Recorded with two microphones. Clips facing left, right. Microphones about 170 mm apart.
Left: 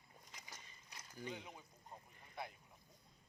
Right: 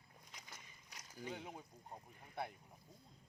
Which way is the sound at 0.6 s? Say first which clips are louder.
Even; 10° right (ahead or behind).